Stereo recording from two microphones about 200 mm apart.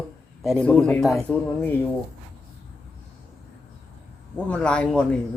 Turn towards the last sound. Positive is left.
turn(degrees=5)  # may be behind; listen again after turning